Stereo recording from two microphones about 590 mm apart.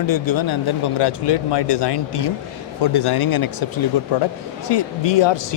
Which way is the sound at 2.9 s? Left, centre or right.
Left.